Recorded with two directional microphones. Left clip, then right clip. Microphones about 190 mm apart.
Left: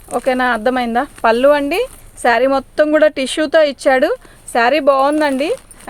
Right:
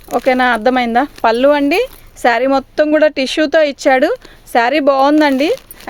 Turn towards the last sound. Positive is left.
turn(degrees=-50)  # may be behind; listen again after turning